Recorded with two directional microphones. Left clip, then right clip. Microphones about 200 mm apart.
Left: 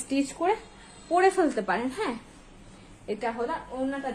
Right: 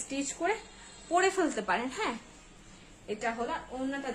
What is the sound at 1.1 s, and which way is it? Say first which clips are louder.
A woman's voice: left 5 dB; 10° left (ahead or behind).